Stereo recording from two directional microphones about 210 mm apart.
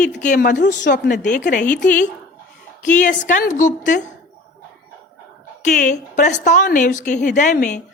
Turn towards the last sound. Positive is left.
turn(degrees=35)  # may be behind; listen again after turning